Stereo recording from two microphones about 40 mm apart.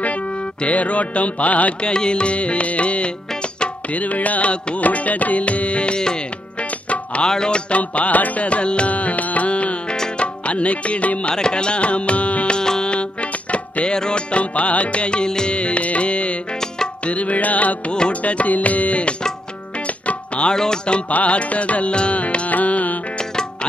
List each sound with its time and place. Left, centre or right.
0.7 s music: left
1.8 s music: left
7.2 s music: centre
7.7 s music: left
11.3 s music: left
12.5 s music: centre
12.9 s music: left
13.9 s music: centre
14.3 s music: left
20.1 s tabla: left
20.5 s music: centre
21.1 s music: left